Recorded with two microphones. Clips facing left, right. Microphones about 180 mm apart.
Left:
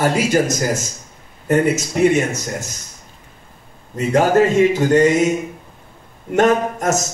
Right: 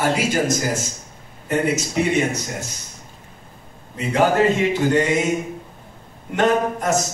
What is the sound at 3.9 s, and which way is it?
Speech, 45° left (ahead or behind).